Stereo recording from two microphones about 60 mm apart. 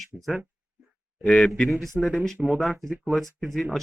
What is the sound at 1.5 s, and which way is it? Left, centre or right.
Speech, centre.